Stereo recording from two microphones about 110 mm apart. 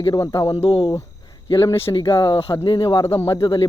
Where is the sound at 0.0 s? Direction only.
35° left (ahead or behind).